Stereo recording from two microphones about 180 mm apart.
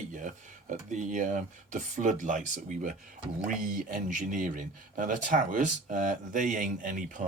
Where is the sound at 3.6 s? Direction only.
50° right (ahead or behind).